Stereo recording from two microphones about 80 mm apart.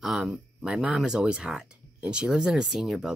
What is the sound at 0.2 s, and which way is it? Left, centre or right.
Speech, centre.